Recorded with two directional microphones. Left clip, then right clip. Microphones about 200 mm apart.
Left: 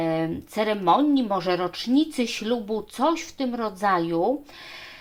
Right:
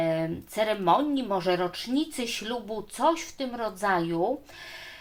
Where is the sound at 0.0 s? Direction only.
30° left (ahead or behind).